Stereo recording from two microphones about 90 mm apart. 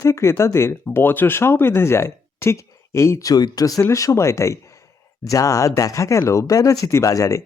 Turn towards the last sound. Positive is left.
turn(degrees=40)  # may be behind; listen again after turning